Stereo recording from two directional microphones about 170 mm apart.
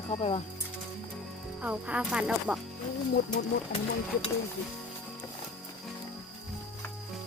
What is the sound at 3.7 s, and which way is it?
Speech, 90° left.